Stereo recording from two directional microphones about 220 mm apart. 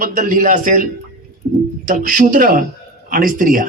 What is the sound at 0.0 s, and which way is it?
A man's voice, 40° right (ahead or behind).